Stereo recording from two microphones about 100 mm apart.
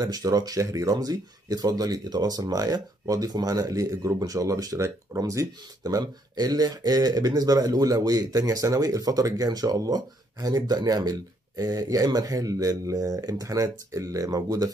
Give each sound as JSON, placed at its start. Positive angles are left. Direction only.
{"t": 0.0, "sound": "speech", "side_deg": -40}